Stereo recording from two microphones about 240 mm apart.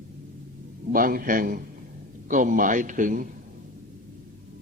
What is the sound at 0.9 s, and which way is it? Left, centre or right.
Speech, right.